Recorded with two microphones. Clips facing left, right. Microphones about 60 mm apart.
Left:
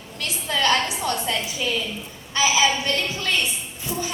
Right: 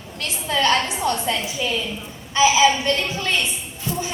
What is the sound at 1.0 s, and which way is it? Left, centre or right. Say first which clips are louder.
Speech: right 3 dB; right.